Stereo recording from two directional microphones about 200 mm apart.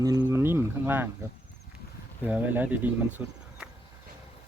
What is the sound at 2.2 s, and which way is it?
Speech, 5° right (ahead or behind).